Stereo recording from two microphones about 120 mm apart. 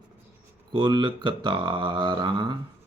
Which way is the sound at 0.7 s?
40° right (ahead or behind).